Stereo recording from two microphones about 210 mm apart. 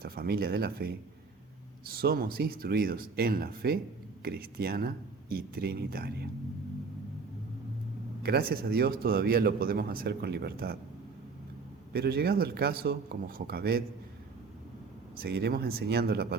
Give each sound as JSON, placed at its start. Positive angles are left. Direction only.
{"t": 0.0, "sound": "speech", "side_deg": -45}
{"t": 8.2, "sound": "speech", "side_deg": -45}
{"t": 11.9, "sound": "speech", "side_deg": -50}
{"t": 15.2, "sound": "speech", "side_deg": -50}